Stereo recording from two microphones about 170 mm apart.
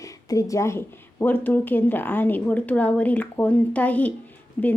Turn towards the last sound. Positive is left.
turn(degrees=10)  # may be behind; listen again after turning